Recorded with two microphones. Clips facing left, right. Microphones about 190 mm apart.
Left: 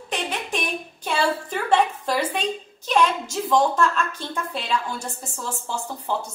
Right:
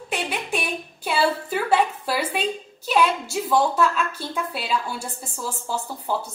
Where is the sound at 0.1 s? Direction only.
5° right (ahead or behind).